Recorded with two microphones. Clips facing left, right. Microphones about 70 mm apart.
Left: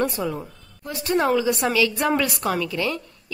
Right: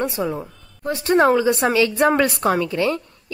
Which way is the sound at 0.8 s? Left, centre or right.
Right.